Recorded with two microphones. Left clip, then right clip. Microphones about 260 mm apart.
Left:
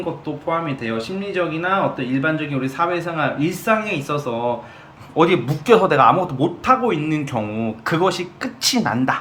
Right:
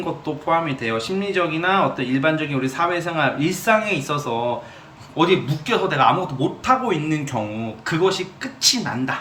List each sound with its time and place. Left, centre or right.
0.4 s speech: centre
7.9 s speech: centre